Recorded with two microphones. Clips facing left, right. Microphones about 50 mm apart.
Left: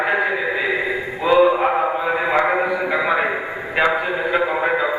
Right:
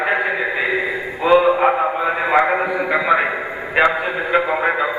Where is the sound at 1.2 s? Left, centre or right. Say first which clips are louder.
Right 1 dB; centre.